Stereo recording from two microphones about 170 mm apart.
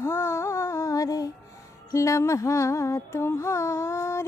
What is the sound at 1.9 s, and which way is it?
Music, 20° left (ahead or behind).